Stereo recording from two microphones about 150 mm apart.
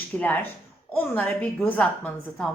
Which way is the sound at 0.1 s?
10° left (ahead or behind).